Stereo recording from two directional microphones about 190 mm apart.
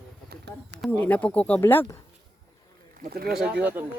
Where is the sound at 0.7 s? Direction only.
5° right (ahead or behind).